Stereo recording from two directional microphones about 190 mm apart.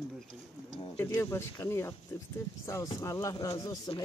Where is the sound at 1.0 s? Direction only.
10° left (ahead or behind).